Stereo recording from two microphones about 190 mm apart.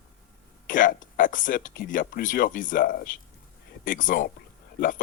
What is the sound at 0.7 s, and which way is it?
Speech, 45° left (ahead or behind).